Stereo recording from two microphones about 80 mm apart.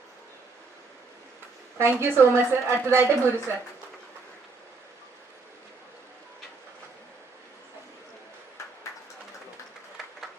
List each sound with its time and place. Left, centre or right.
1.8 s a woman's voice: right